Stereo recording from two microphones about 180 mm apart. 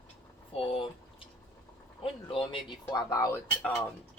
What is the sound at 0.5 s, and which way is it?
Speech, 30° left (ahead or behind).